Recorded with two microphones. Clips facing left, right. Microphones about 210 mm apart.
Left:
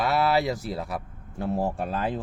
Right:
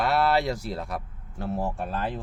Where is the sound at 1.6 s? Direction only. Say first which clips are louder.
Left 2 dB; 15° left (ahead or behind).